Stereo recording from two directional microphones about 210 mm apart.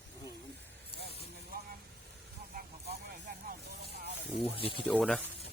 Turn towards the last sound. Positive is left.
turn(degrees=5)  # may be behind; listen again after turning